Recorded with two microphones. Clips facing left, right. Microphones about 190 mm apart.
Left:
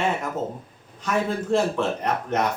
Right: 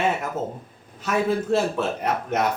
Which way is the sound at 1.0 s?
5° right (ahead or behind).